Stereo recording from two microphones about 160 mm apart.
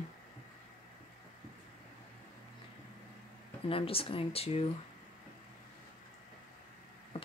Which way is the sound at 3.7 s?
35° left (ahead or behind).